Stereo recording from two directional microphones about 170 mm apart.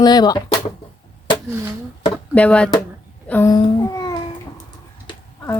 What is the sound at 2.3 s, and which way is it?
Speech, 5° left (ahead or behind).